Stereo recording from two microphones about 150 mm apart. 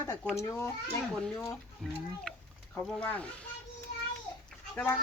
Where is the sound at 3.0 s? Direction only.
10° left (ahead or behind).